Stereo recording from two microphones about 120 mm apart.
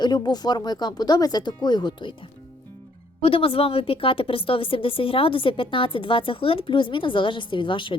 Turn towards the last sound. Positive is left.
turn(degrees=45)  # may be behind; listen again after turning